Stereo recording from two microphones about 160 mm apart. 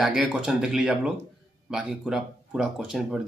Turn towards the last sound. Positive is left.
turn(degrees=0)  # may be behind; listen again after turning